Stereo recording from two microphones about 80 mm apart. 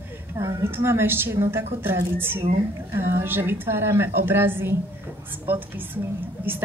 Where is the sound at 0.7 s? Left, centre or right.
Right.